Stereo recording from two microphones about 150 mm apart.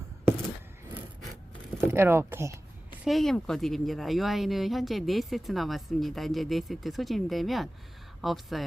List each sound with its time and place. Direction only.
1.8 s speech: 15° right (ahead or behind)
3.0 s speech: centre (ahead or behind)